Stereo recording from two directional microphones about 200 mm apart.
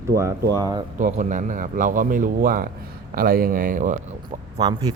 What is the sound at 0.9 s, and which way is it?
A man's voice, 40° right (ahead or behind).